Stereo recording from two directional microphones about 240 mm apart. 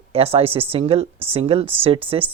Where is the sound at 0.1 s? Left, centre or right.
Right.